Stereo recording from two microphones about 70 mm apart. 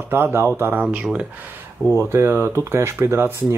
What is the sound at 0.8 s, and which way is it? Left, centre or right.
Speech, centre.